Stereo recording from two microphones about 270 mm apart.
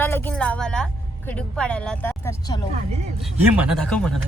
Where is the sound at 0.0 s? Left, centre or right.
Centre.